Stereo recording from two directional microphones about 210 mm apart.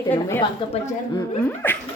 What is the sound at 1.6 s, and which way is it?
Speech, 10° left (ahead or behind).